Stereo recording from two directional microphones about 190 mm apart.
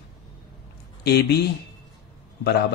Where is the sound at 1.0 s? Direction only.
55° left (ahead or behind).